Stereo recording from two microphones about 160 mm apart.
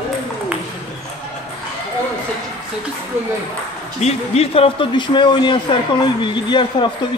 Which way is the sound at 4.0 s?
40° left (ahead or behind).